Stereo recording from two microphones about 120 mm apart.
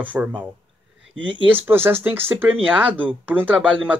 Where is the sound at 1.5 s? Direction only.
15° right (ahead or behind).